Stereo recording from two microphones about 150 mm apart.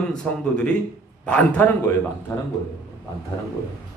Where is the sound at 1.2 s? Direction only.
10° left (ahead or behind).